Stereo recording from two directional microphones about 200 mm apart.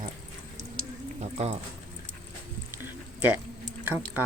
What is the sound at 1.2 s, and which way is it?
Speech, 30° right (ahead or behind).